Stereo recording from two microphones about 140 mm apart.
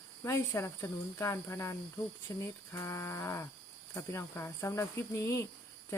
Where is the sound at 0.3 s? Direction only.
20° left (ahead or behind).